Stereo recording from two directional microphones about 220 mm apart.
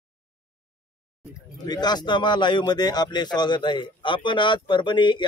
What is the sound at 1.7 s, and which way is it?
Speech, 20° left (ahead or behind).